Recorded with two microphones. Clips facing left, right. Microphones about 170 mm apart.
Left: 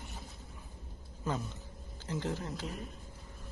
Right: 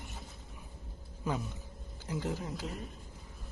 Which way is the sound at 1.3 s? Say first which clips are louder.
Right 1 dB; 15° right (ahead or behind).